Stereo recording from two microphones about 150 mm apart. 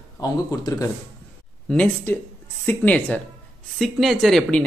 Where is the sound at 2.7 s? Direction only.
10° left (ahead or behind).